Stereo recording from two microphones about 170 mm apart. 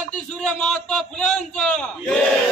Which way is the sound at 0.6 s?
5° left (ahead or behind).